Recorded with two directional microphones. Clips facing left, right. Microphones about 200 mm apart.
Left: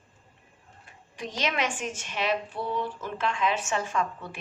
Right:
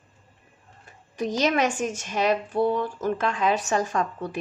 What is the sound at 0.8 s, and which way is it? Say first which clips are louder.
Speech: right 9 dB; 40° right (ahead or behind).